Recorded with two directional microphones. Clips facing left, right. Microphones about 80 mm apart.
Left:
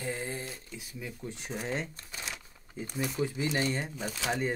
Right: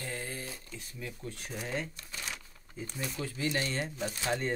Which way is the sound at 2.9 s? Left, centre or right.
Centre.